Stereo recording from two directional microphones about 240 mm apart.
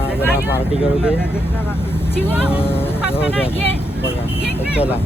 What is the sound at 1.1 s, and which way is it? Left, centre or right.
Speech, centre.